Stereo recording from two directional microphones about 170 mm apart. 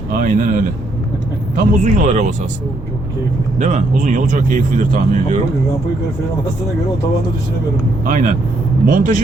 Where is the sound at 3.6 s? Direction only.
45° right (ahead or behind).